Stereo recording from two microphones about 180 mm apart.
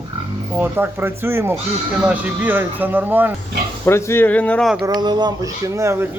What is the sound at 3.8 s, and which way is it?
Speech, 15° left (ahead or behind).